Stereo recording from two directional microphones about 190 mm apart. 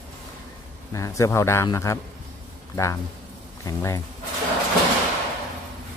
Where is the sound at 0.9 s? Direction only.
15° left (ahead or behind).